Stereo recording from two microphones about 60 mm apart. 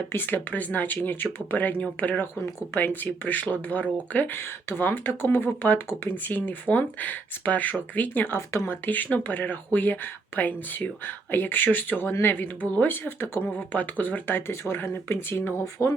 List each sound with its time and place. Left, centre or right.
0.1 s speech: left
8.3 s speech: left
8.9 s speech: left
15.8 s speech: left